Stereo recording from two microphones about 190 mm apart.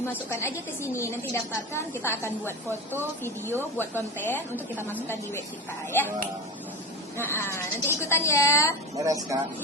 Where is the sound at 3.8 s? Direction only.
10° left (ahead or behind).